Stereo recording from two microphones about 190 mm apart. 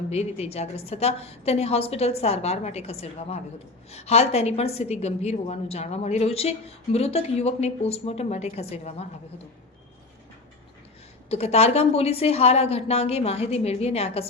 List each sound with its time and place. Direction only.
0.1 s a woman's voice: 35° left (ahead or behind)
11.3 s a woman's voice: 35° left (ahead or behind)